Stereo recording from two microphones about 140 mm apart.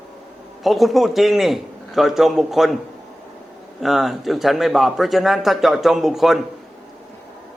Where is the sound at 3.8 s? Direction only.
Centre (ahead or behind).